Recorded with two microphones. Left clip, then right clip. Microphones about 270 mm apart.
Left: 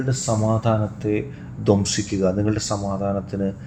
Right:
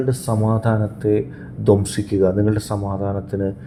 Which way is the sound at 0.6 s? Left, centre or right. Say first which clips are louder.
Right 2 dB; right.